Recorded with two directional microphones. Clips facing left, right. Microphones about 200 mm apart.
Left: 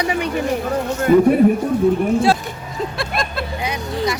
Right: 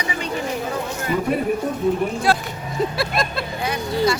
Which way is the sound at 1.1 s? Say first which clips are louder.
Left 11 dB; 45° left (ahead or behind).